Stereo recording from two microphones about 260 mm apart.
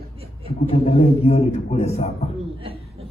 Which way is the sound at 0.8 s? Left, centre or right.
Left.